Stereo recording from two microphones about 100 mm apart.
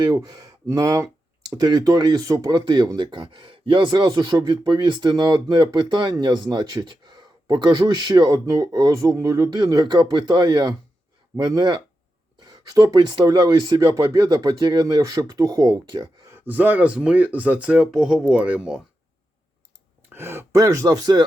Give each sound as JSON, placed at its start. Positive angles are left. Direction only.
{"t": 0.0, "sound": "speech", "side_deg": -40}
{"t": 2.6, "sound": "speech", "side_deg": -45}
{"t": 16.3, "sound": "speech", "side_deg": -20}
{"t": 20.1, "sound": "speech", "side_deg": -25}